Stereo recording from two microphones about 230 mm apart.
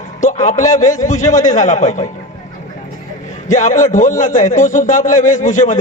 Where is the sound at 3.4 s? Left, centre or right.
Left.